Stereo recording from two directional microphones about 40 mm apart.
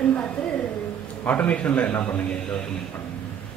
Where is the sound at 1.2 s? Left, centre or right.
Left.